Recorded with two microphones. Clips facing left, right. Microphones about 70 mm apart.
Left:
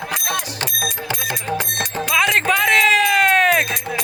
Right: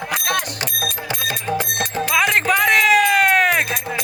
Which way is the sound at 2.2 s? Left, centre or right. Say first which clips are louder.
Even; centre.